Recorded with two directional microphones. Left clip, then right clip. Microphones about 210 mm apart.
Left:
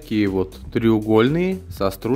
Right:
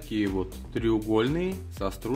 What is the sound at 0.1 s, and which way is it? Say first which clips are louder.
Speech: left 8 dB; 40° left (ahead or behind).